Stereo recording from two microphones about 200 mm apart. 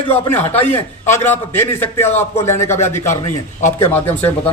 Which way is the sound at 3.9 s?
10° left (ahead or behind).